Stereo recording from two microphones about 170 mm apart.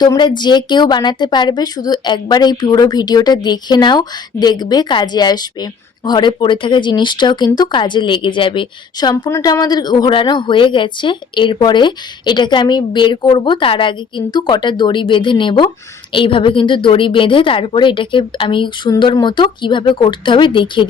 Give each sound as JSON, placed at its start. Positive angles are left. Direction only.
{"t": 0.0, "sound": "speech", "side_deg": 25}